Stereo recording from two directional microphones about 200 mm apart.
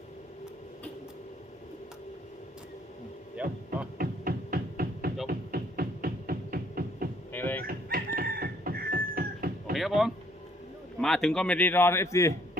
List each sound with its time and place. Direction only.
3.4 s a sound: 5° right (ahead or behind)
3.9 s music: 45° right (ahead or behind)
7.3 s music: 10° left (ahead or behind)
7.6 s chicken: 45° right (ahead or behind)
9.7 s a sound: centre (ahead or behind)
11.0 s speech: centre (ahead or behind)